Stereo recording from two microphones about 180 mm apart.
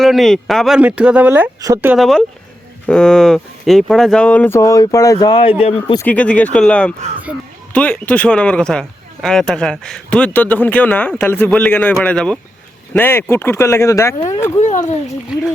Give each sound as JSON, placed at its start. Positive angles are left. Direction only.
{"t": 0.0, "sound": "speech", "side_deg": 0}
{"t": 2.0, "sound": "speech", "side_deg": 0}
{"t": 6.0, "sound": "speech", "side_deg": 10}
{"t": 14.6, "sound": "speech", "side_deg": 40}